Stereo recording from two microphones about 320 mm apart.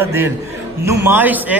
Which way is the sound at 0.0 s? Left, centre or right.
Centre.